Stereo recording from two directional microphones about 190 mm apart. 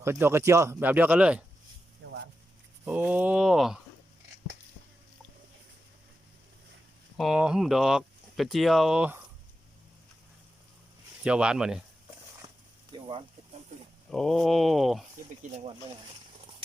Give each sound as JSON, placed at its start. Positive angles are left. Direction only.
{"t": 0.0, "sound": "speech", "side_deg": -15}
{"t": 2.0, "sound": "a sound", "side_deg": -90}
{"t": 2.8, "sound": "speech", "side_deg": -10}
{"t": 7.2, "sound": "speech", "side_deg": -5}
{"t": 11.2, "sound": "speech", "side_deg": -5}
{"t": 12.9, "sound": "a sound", "side_deg": -25}
{"t": 14.1, "sound": "speech", "side_deg": 0}